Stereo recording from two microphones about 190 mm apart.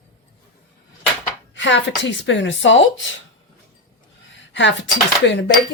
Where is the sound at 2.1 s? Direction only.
70° left (ahead or behind).